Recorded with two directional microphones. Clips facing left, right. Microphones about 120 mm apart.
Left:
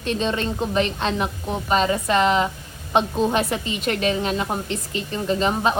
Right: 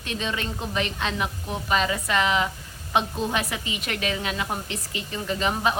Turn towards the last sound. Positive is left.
turn(degrees=30)  # may be behind; listen again after turning